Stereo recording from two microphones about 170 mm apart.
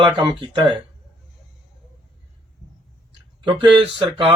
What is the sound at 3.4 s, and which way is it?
Speech, 30° right (ahead or behind).